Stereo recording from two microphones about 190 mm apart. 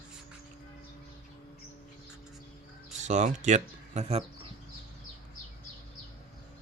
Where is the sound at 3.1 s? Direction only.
40° right (ahead or behind).